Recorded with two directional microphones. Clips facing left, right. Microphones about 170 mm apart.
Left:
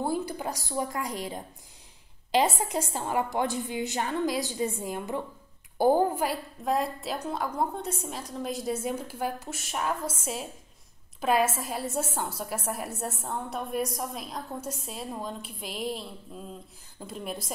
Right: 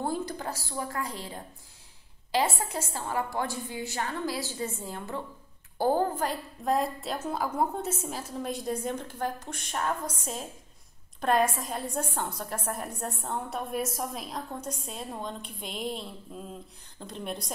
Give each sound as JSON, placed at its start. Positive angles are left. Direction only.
{"t": 0.0, "sound": "a woman's voice", "side_deg": 10}